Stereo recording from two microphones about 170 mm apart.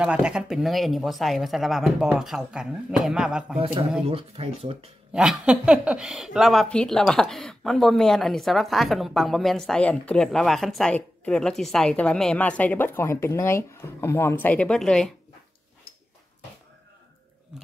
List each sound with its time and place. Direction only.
0.0 s speech: 5° right (ahead or behind)
4.1 s speech: 35° right (ahead or behind)
5.1 s speech: 5° right (ahead or behind)